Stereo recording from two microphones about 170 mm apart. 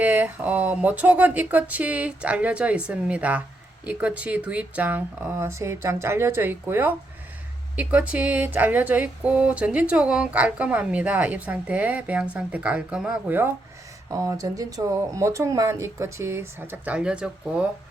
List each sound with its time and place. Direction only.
0.0 s speech: 10° right (ahead or behind)